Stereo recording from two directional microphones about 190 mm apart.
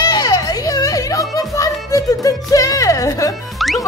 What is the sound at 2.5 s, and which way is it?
Speech, 20° left (ahead or behind).